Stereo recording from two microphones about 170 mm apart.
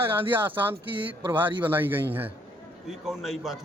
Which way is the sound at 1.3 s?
10° right (ahead or behind).